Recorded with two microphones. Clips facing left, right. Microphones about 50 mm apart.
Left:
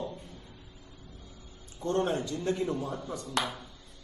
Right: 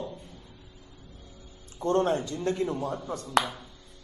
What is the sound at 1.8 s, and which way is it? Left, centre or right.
Speech, right.